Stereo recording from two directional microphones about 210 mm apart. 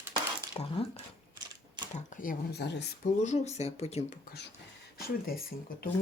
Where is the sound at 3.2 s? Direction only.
30° left (ahead or behind).